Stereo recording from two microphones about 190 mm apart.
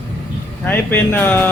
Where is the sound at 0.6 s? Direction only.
10° left (ahead or behind).